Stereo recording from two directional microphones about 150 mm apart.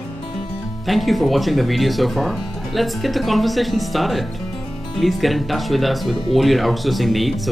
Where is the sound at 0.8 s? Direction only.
Centre (ahead or behind).